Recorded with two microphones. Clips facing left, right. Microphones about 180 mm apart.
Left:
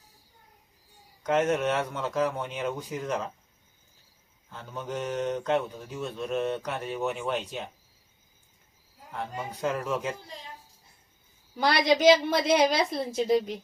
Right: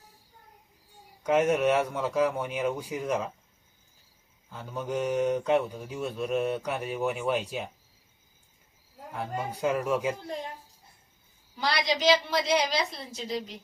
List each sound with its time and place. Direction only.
1.2 s speech: 10° right (ahead or behind)
4.4 s speech: 10° right (ahead or behind)
9.1 s speech: 10° right (ahead or behind)
11.6 s a woman's voice: 55° left (ahead or behind)